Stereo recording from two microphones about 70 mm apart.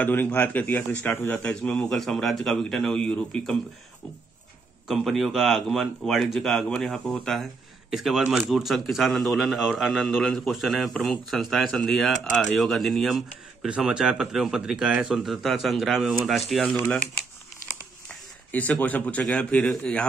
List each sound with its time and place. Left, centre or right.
0.0 s a man's voice: left
1.4 s speech: centre
2.0 s speech: centre
4.8 s speech: centre
13.7 s speech: centre
18.0 s a sound: left
19.2 s speech: centre